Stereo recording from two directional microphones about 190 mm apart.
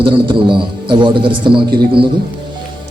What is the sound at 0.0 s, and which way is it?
A man's voice, 25° right (ahead or behind).